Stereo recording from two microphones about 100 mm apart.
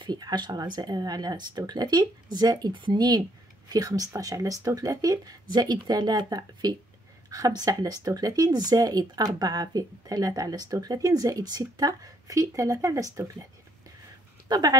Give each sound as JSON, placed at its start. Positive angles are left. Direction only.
{"t": 0.0, "sound": "speech", "side_deg": -45}
{"t": 14.5, "sound": "speech", "side_deg": -40}